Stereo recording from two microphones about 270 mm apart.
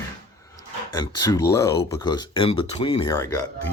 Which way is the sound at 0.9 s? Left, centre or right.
Centre.